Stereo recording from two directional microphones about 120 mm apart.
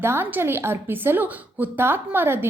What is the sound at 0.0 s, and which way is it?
A woman's voice, 20° right (ahead or behind).